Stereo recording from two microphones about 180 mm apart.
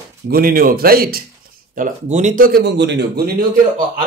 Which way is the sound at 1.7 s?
45° right (ahead or behind).